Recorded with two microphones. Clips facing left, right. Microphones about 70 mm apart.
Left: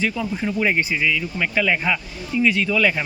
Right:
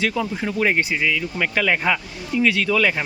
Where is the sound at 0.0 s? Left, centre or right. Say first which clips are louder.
Right 1 dB; right.